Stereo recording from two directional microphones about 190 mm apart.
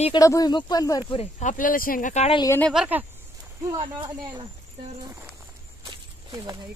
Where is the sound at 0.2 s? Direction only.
20° left (ahead or behind).